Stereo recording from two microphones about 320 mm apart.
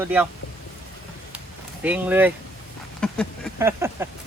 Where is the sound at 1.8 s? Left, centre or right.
Centre.